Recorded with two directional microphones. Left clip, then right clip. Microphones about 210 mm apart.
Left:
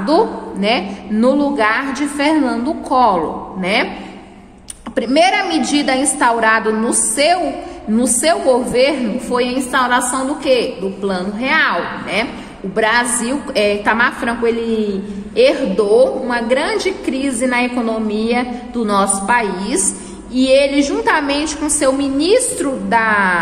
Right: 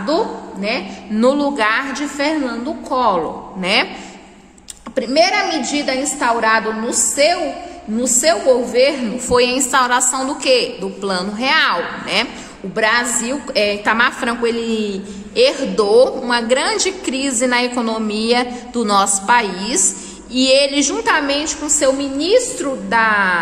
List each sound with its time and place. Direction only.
0.0 s a woman's voice: 5° right (ahead or behind)
1.1 s a woman's voice: 15° right (ahead or behind)
2.1 s a woman's voice: 5° right (ahead or behind)
3.6 s a woman's voice: 20° right (ahead or behind)
4.9 s a woman's voice: 5° right (ahead or behind)
9.3 s a woman's voice: 20° right (ahead or behind)